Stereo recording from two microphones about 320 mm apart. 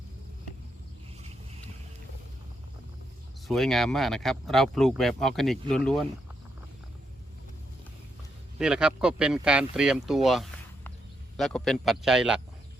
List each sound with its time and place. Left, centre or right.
3.4 s speech: centre
8.5 s speech: centre